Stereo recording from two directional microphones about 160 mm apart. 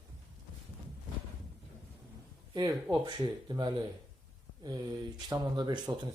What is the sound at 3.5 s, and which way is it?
Speech, 25° right (ahead or behind).